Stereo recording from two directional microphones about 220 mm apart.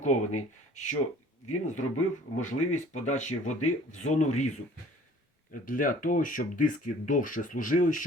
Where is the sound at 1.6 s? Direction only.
35° left (ahead or behind).